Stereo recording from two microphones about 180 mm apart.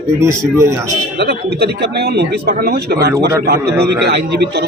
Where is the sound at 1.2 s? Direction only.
65° right (ahead or behind).